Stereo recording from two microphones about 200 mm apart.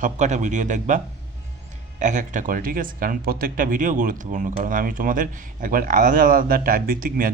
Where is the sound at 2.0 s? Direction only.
40° right (ahead or behind).